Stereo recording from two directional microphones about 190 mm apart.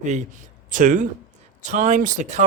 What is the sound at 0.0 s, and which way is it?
Speech, 40° right (ahead or behind).